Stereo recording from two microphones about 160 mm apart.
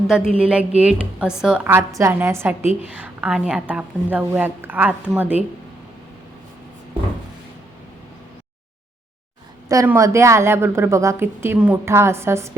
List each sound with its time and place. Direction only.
0.1 s a woman's voice: 5° right (ahead or behind)
9.6 s a woman's voice: 15° right (ahead or behind)